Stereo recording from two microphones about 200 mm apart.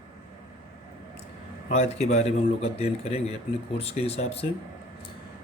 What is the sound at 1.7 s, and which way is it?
Speech, 35° left (ahead or behind).